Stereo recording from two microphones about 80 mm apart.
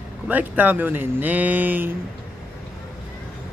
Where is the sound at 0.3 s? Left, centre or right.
Right.